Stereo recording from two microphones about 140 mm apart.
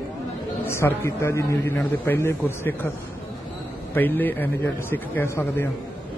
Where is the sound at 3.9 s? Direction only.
15° left (ahead or behind).